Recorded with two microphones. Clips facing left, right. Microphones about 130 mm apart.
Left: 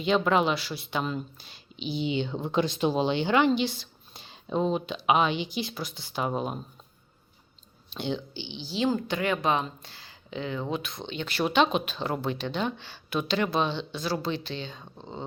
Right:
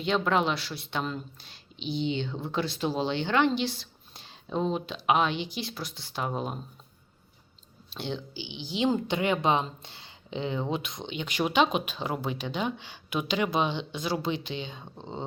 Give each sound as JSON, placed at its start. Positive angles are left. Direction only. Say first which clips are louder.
{"t": 0.0, "sound": "speech", "louder": "left 2 dB", "side_deg": 0}
{"t": 7.9, "sound": "speech", "louder": "left 3 dB", "side_deg": 0}